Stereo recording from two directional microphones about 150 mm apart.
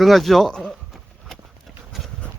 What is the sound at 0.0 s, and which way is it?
Speech, centre (ahead or behind).